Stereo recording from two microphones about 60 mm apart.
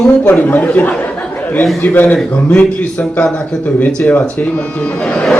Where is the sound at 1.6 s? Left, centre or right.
Left.